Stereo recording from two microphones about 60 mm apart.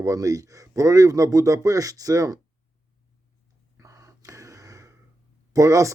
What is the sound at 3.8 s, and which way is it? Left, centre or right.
Gasp, right.